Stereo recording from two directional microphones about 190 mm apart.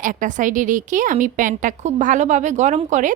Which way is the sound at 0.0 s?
45° right (ahead or behind).